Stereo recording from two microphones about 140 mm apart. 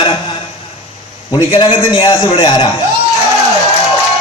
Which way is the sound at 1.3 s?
35° left (ahead or behind).